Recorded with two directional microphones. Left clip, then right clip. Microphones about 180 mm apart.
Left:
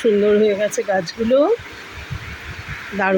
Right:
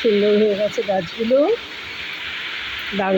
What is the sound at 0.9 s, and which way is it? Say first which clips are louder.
Speech: left 2 dB; 15° left (ahead or behind).